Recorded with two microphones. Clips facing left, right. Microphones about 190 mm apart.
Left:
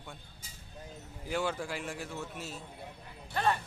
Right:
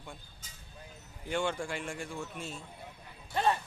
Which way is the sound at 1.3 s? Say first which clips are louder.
Right 1 dB; 5° left (ahead or behind).